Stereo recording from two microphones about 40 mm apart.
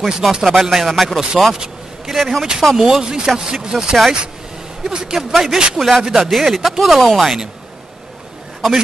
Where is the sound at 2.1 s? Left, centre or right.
Centre.